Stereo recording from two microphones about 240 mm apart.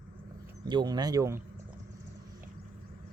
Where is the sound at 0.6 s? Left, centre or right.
Centre.